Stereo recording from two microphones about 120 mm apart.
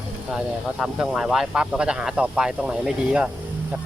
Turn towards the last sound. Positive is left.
turn(degrees=-5)  # may be behind; listen again after turning